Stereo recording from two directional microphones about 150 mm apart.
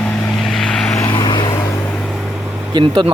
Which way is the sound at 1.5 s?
15° left (ahead or behind).